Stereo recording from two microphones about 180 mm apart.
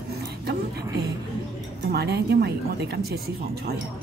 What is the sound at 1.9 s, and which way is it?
Speech, 65° right (ahead or behind).